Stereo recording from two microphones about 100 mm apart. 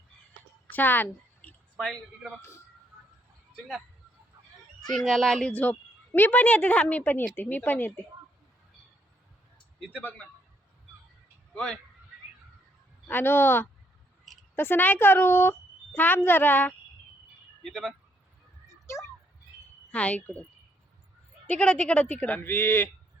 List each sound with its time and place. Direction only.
0.7 s a sound: 20° left (ahead or behind)
4.9 s speech: centre (ahead or behind)
5.5 s a woman's voice: 15° left (ahead or behind)
9.8 s a woman's voice: 15° left (ahead or behind)
11.5 s a woman's voice: 5° left (ahead or behind)
13.1 s a woman's voice: 20° left (ahead or behind)
17.6 s speech: 5° left (ahead or behind)
19.9 s a woman's voice: 15° left (ahead or behind)
21.4 s a woman's voice: 15° left (ahead or behind)